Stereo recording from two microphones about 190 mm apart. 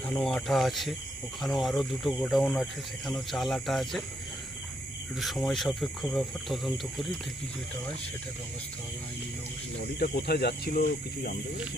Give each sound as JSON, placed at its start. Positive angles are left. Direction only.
{"t": 0.2, "sound": "speech", "side_deg": 0}
{"t": 5.2, "sound": "speech", "side_deg": 0}
{"t": 10.0, "sound": "speech", "side_deg": 55}